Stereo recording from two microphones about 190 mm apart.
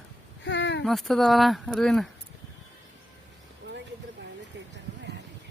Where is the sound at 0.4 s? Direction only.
70° left (ahead or behind).